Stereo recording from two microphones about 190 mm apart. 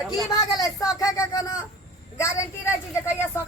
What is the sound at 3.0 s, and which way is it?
Speech, 15° left (ahead or behind).